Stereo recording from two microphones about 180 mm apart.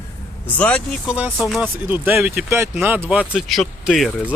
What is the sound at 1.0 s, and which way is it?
Speech, 5° right (ahead or behind).